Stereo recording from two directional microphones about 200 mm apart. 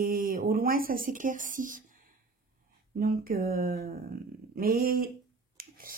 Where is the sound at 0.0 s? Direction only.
45° right (ahead or behind).